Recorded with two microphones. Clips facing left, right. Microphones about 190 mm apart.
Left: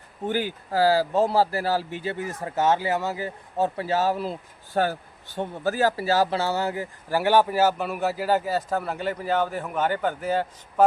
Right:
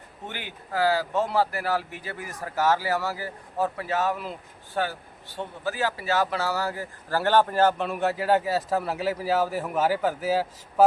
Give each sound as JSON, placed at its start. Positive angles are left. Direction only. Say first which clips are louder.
{"t": 0.3, "sound": "speech", "louder": "left 10 dB", "side_deg": 35}